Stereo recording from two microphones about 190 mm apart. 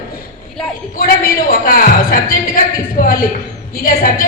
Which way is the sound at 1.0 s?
50° left (ahead or behind).